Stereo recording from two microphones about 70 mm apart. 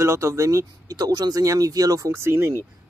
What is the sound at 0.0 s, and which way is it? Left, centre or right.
Speech, right.